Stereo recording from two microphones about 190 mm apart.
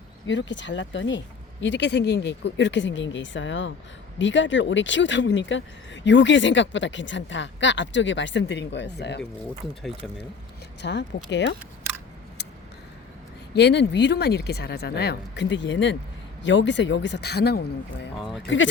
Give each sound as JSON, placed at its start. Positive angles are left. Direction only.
{"t": 0.3, "sound": "speech", "side_deg": 70}
{"t": 10.8, "sound": "speech", "side_deg": 65}
{"t": 13.6, "sound": "speech", "side_deg": 65}
{"t": 18.2, "sound": "speech", "side_deg": 0}
{"t": 18.4, "sound": "speech", "side_deg": 75}